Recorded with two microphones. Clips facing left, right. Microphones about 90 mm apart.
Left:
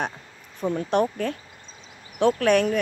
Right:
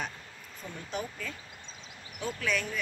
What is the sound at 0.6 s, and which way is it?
Speech, 70° left (ahead or behind).